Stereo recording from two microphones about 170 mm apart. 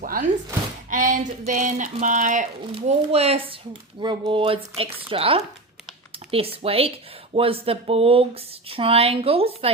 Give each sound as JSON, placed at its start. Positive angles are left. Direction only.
{"t": 0.0, "sound": "speech", "side_deg": -55}
{"t": 2.7, "sound": "speech", "side_deg": -35}